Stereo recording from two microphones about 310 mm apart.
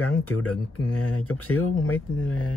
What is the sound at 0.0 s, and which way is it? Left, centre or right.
Speech, left.